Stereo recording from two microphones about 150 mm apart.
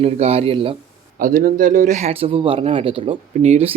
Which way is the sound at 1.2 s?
70° right (ahead or behind).